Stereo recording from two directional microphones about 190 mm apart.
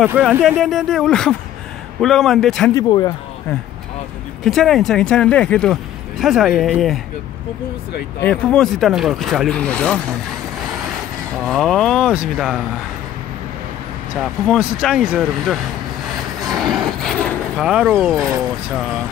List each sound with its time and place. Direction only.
0.0 s speech: 5° right (ahead or behind)
2.7 s speech: 20° left (ahead or behind)
4.5 s speech: centre (ahead or behind)
8.2 s speech: 5° left (ahead or behind)
11.3 s speech: 5° left (ahead or behind)
14.2 s speech: 5° right (ahead or behind)
17.0 s vehicle: 5° left (ahead or behind)